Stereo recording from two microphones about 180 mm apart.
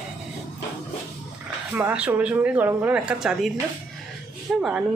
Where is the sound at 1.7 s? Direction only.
10° right (ahead or behind).